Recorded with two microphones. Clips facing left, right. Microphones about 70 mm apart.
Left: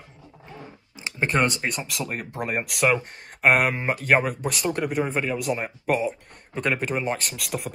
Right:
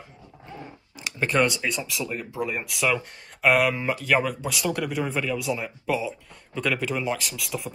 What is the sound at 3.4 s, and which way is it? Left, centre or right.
Speech, left.